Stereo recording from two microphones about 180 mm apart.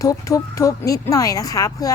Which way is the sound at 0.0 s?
20° left (ahead or behind).